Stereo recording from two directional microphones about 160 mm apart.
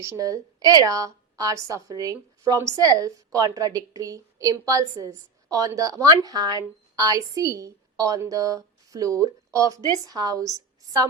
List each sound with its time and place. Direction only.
0.0 s a woman's voice: 20° right (ahead or behind)